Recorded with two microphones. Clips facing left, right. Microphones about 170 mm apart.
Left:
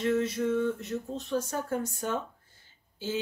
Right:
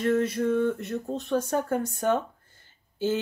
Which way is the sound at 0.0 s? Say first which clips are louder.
Right 3 dB; 55° right (ahead or behind).